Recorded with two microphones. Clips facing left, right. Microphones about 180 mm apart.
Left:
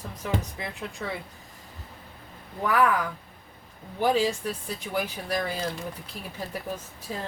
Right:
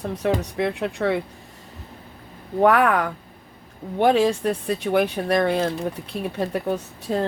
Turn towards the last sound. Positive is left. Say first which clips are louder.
# right 11 dB
turn(degrees=-75)  # may be behind; listen again after turning